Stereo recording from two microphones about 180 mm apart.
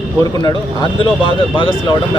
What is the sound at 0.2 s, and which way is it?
A man's voice, 25° left (ahead or behind).